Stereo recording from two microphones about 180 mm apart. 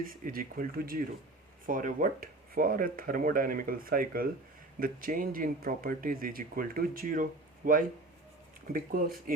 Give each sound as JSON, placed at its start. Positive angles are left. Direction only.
{"t": 0.0, "sound": "speech", "side_deg": -50}